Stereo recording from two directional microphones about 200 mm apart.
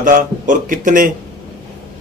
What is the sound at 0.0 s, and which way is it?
A man's voice, 40° right (ahead or behind).